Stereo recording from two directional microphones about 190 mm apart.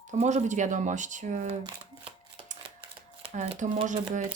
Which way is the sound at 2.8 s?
35° right (ahead or behind).